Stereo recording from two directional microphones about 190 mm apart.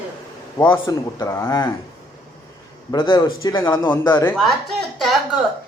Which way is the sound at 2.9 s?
25° left (ahead or behind).